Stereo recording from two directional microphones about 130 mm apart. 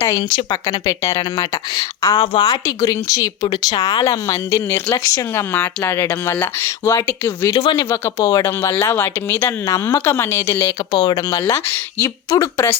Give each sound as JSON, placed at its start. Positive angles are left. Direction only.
{"t": 0.0, "sound": "speech", "side_deg": 25}
{"t": 0.3, "sound": "speech", "side_deg": 35}
{"t": 2.1, "sound": "speech", "side_deg": 45}
{"t": 7.5, "sound": "speech", "side_deg": 40}
{"t": 7.9, "sound": "speech", "side_deg": 20}